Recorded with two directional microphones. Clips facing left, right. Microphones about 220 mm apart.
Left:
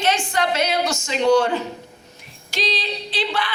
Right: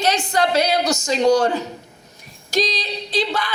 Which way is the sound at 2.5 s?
40° right (ahead or behind).